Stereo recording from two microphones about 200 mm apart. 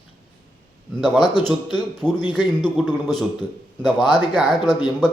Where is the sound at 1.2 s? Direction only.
20° left (ahead or behind).